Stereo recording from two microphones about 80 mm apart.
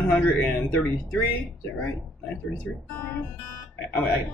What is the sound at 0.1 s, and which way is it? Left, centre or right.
Speech, centre.